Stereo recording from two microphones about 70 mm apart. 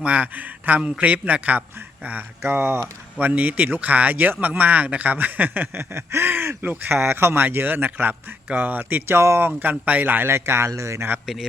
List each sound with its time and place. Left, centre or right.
0.0 s speech: centre; by 9.5 s right
9.6 s speech: right